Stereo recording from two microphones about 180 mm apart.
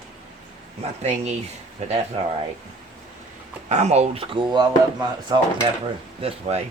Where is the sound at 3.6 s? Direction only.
40° right (ahead or behind).